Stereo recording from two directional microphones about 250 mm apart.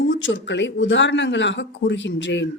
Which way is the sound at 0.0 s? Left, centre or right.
Left.